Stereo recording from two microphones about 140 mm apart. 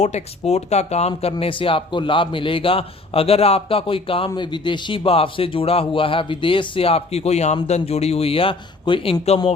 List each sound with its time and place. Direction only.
0.0 s speech: 55° left (ahead or behind)